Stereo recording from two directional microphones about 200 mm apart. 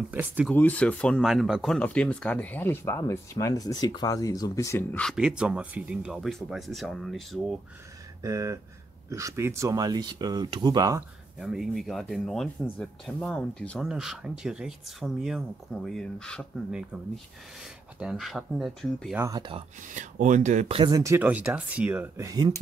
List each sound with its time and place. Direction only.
0.1 s speech: 10° right (ahead or behind)
0.5 s speech: 5° left (ahead or behind)
8.2 s speech: 15° right (ahead or behind)
11.3 s speech: centre (ahead or behind)
19.2 s speech: 20° right (ahead or behind)
19.9 s speech: 40° right (ahead or behind); by 22.5 s 15° right (ahead or behind)